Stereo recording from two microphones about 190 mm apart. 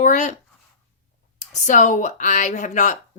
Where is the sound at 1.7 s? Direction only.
40° left (ahead or behind).